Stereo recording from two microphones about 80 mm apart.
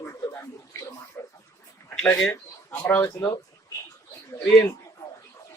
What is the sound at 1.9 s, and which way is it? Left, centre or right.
Speech, centre.